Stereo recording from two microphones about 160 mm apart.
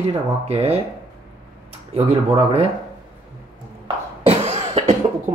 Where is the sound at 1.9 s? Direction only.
40° right (ahead or behind).